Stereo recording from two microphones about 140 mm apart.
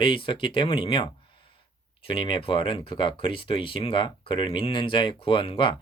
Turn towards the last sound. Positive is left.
turn(degrees=35)  # may be behind; listen again after turning